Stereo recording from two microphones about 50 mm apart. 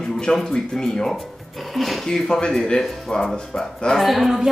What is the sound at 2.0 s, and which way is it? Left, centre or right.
Speech, centre.